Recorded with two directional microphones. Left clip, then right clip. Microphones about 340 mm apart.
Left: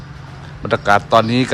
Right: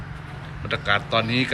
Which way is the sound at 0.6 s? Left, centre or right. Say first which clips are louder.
Left 9 dB; centre.